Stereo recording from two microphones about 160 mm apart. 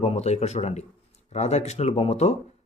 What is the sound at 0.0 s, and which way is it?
Speech, 40° left (ahead or behind).